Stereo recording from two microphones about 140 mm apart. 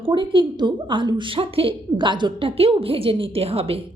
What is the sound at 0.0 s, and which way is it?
A woman's voice, 35° right (ahead or behind).